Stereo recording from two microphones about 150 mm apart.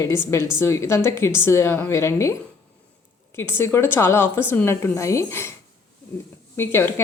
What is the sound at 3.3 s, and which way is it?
A woman's voice, 15° left (ahead or behind).